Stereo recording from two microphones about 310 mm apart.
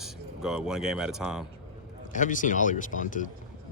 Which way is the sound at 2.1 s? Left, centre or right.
Left.